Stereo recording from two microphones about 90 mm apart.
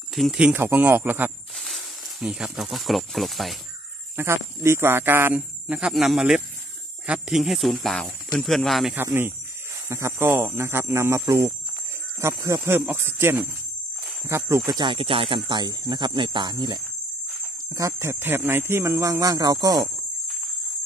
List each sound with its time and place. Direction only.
0.1 s speech: 5° right (ahead or behind)
0.6 s speech: 25° right (ahead or behind)
1.5 s speech: centre (ahead or behind)
4.2 s speech: 30° right (ahead or behind); by 8.9 s centre (ahead or behind)
8.9 s speech: 25° right (ahead or behind)
14.7 s speech: 55° right (ahead or behind)
15.0 s speech: 85° right; by 16.8 s 55° right (ahead or behind)
17.7 s speech: 35° right (ahead or behind)
18.2 s speech: 25° right (ahead or behind); by 19.9 s 40° right (ahead or behind)